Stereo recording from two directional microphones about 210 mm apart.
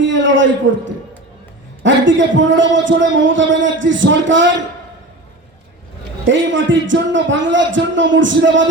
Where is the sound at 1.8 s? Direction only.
60° right (ahead or behind).